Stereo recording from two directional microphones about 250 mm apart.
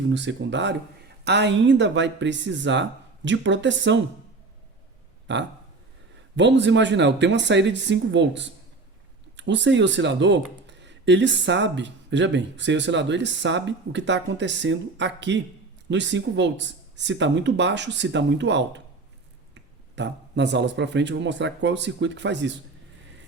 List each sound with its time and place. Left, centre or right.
0.1 s speech: right
5.3 s speech: right
20.0 s speech: right